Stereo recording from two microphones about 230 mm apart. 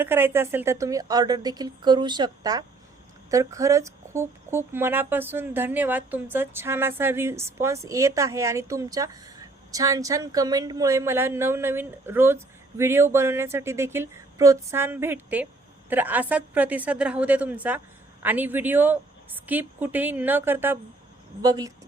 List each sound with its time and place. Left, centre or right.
0.0 s speech: centre